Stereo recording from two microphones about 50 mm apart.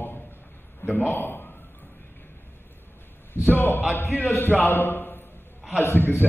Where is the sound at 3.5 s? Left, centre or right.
Left.